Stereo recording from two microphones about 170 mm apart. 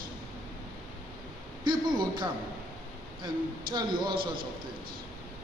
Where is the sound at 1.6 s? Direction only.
25° right (ahead or behind).